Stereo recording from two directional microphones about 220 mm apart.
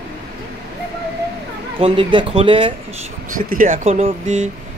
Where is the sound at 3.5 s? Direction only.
35° right (ahead or behind).